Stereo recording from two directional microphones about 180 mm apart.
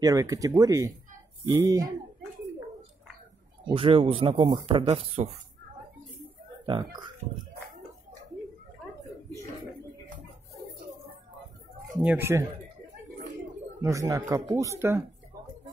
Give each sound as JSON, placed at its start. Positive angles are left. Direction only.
{"t": 0.0, "sound": "speech", "side_deg": -20}
{"t": 3.6, "sound": "speech", "side_deg": -30}
{"t": 6.6, "sound": "speech", "side_deg": -25}
{"t": 12.0, "sound": "speech", "side_deg": -10}
{"t": 13.8, "sound": "speech", "side_deg": -15}